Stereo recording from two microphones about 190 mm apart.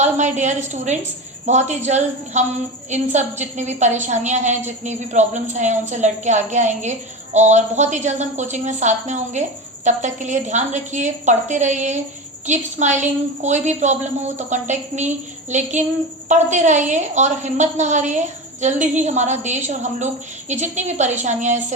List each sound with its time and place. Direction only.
0.0 s a woman's voice: 40° right (ahead or behind)